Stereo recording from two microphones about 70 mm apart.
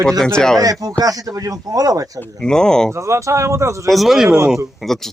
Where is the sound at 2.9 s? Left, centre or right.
Right.